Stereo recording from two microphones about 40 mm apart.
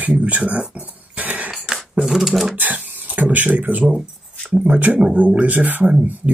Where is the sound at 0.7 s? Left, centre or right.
Right.